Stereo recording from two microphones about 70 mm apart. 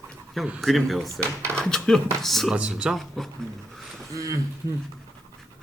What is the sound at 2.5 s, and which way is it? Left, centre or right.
Speech, centre.